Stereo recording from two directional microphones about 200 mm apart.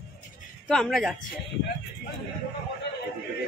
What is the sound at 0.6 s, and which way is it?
Speech, centre (ahead or behind).